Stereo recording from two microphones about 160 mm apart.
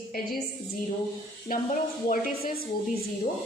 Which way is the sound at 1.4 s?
55° left (ahead or behind).